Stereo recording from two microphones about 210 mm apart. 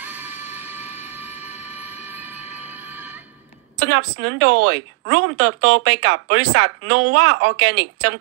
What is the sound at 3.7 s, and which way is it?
Speech, 90° right.